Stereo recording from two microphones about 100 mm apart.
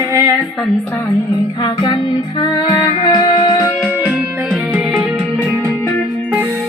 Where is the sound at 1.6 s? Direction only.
50° left (ahead or behind).